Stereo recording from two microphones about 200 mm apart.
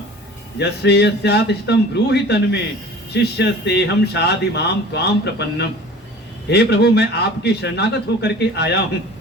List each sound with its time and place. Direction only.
0.6 s a man's voice: 55° left (ahead or behind)